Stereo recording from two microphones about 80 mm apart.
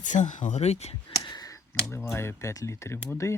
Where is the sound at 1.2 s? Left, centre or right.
Left.